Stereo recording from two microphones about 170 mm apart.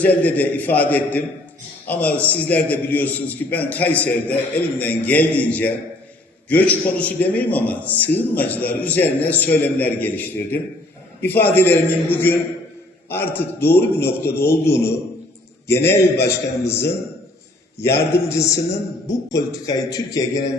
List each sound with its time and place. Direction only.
0.0 s a man's voice: 10° left (ahead or behind)